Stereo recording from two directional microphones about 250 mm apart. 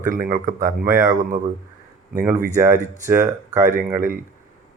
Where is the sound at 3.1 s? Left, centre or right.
Centre.